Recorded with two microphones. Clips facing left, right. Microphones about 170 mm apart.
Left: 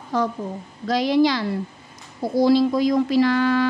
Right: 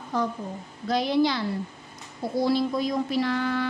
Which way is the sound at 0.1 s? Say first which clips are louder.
Left 5 dB; 90° left.